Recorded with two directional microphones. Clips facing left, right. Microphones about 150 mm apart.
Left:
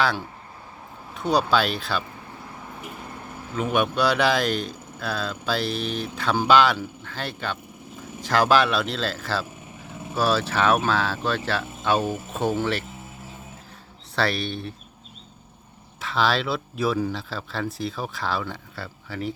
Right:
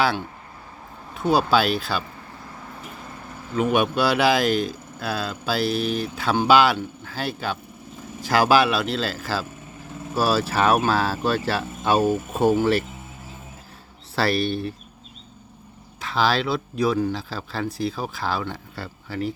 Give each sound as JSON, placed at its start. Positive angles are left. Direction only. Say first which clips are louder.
{"t": 0.0, "sound": "speech", "louder": "right 2 dB", "side_deg": -5}
{"t": 3.6, "sound": "speech", "louder": "right 2 dB", "side_deg": -10}
{"t": 14.2, "sound": "speech", "louder": "right 3 dB", "side_deg": -5}
{"t": 16.0, "sound": "speech", "louder": "right 1 dB", "side_deg": 0}